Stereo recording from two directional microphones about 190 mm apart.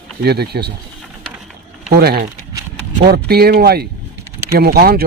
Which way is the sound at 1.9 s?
55° right (ahead or behind).